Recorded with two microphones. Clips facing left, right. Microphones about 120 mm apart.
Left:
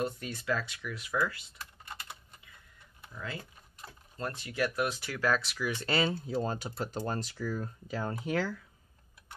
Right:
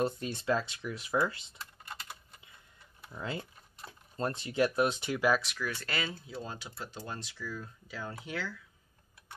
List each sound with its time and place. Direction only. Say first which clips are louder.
0.0 s speech: right 3 dB; 30° right (ahead or behind)
3.1 s speech: right 3 dB; 25° right (ahead or behind)
5.4 s speech: left 2 dB; centre (ahead or behind)
6.0 s speech: left 8 dB; 45° left (ahead or behind)